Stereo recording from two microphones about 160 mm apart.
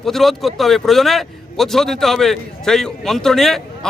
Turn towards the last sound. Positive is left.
turn(degrees=0)  # may be behind; listen again after turning